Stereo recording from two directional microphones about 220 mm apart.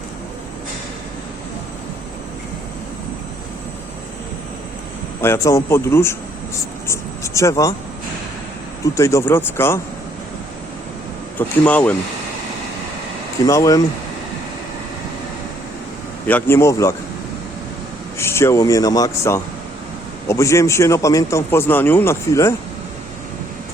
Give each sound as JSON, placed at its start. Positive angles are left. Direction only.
{"t": 5.2, "sound": "speech", "side_deg": 10}
{"t": 8.8, "sound": "speech", "side_deg": 10}
{"t": 11.3, "sound": "speech", "side_deg": 5}
{"t": 13.4, "sound": "speech", "side_deg": 15}
{"t": 16.2, "sound": "speech", "side_deg": 10}
{"t": 18.2, "sound": "speech", "side_deg": 10}